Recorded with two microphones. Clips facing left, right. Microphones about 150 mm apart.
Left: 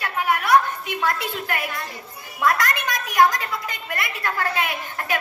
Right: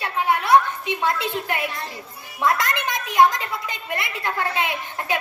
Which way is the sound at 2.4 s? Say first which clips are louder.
Even; 25° right (ahead or behind).